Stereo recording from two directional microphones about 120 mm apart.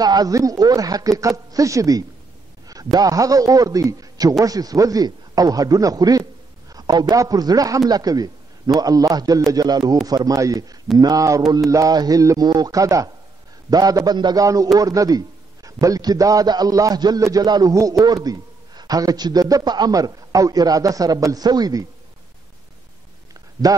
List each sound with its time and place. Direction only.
0.0 s a man's voice: 35° right (ahead or behind)